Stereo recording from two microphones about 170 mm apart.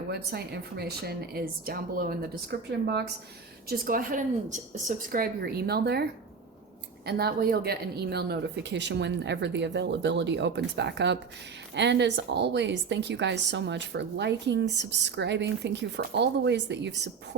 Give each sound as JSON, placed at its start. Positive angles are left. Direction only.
{"t": 0.1, "sound": "speech", "side_deg": -70}
{"t": 3.7, "sound": "a woman's voice", "side_deg": -55}